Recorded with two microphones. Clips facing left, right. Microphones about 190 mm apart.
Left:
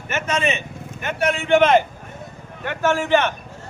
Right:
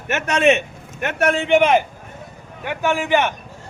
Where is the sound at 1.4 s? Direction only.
15° right (ahead or behind).